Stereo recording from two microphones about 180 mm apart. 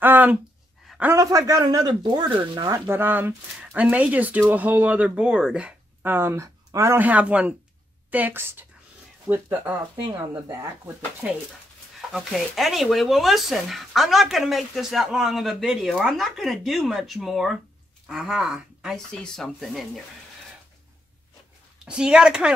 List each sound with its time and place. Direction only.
0.0 s speech: 10° right (ahead or behind)
0.8 s a sound: 5° right (ahead or behind)
1.1 s speech: 20° right (ahead or behind)
2.9 s speech: 10° right (ahead or behind)
10.0 s speech: 25° right (ahead or behind)
11.2 s speech: 10° right (ahead or behind)
21.7 s speech: 5° right (ahead or behind)